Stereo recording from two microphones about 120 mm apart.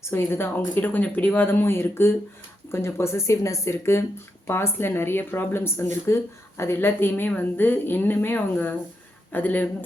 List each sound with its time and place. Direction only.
0.0 s speech: 20° left (ahead or behind)